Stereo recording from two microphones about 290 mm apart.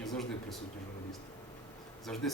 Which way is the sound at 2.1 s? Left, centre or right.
Centre.